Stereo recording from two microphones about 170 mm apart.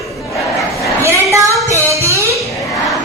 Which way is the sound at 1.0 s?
15° right (ahead or behind).